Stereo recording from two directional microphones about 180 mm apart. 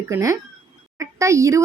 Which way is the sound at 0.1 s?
15° right (ahead or behind).